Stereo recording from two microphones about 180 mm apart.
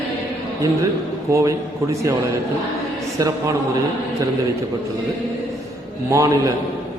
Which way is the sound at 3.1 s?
20° right (ahead or behind).